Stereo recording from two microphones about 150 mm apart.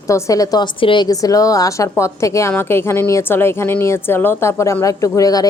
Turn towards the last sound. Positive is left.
turn(degrees=25)  # may be behind; listen again after turning